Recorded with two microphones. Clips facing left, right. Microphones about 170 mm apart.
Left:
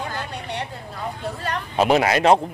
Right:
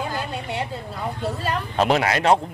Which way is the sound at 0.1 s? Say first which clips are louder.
Right 2 dB; 10° right (ahead or behind).